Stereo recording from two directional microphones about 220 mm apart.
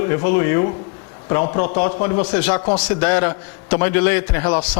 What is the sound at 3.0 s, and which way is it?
A man's voice, 15° left (ahead or behind).